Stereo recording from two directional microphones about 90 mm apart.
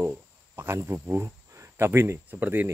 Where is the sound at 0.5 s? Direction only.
30° right (ahead or behind).